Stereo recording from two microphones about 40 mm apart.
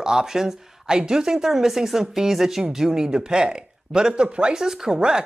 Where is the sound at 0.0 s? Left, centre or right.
Centre.